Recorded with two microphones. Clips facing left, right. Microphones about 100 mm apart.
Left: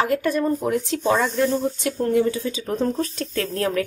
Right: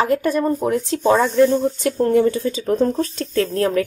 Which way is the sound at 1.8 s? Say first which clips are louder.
Right 4 dB; 50° right (ahead or behind).